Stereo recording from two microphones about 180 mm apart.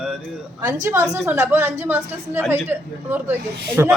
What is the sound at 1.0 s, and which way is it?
A woman's voice, 5° right (ahead or behind).